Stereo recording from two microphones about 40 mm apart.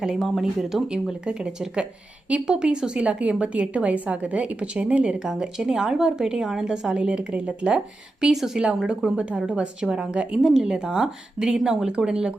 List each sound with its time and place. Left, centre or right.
0.0 s a woman's voice: centre
1.2 s a woman's voice: right
5.2 s a woman's voice: centre
6.9 s a woman's voice: right
8.2 s a woman's voice: centre